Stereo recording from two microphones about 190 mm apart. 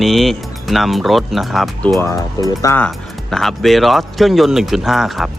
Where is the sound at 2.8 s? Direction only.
Centre (ahead or behind).